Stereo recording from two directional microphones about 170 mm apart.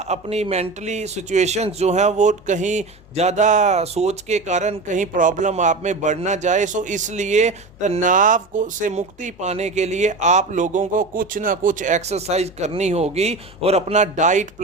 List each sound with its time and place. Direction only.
0.0 s speech: 40° right (ahead or behind)